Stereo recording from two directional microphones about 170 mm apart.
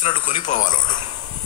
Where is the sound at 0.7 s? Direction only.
25° left (ahead or behind).